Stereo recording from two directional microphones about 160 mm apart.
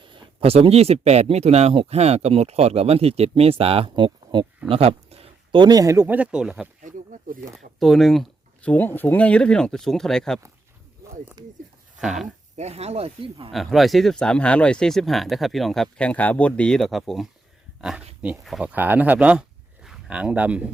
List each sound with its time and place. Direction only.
0.1 s speech: 35° right (ahead or behind); by 6.7 s 5° right (ahead or behind)
6.8 s speech: 55° right (ahead or behind)
7.8 s speech: centre (ahead or behind)
11.4 s speech: 25° right (ahead or behind)
11.9 s speech: centre (ahead or behind)
12.5 s speech: 40° right (ahead or behind)
13.5 s speech: centre (ahead or behind)